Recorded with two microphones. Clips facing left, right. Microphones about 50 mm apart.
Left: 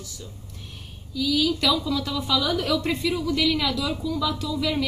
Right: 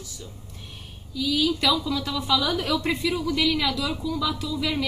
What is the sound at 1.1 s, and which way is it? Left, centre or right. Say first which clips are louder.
A woman's voice: left 1 dB; centre.